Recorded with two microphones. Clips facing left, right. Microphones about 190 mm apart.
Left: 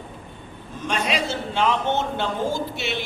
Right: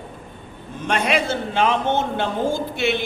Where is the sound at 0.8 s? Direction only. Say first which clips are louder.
Right 4 dB; 60° right (ahead or behind).